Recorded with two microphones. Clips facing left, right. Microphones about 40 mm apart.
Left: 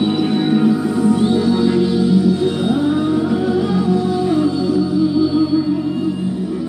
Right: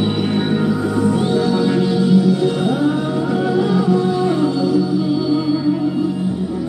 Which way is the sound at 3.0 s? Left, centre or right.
Right.